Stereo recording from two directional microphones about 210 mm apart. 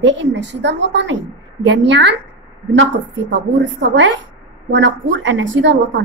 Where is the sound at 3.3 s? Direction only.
60° right (ahead or behind).